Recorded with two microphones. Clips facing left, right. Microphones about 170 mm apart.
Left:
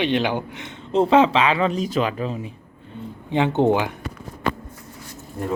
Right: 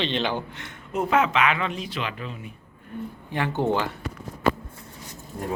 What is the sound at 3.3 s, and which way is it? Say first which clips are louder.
Speech: left 7 dB; 20° left (ahead or behind).